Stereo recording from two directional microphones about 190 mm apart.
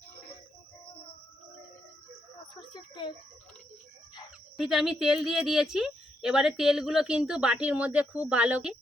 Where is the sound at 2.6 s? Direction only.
25° left (ahead or behind).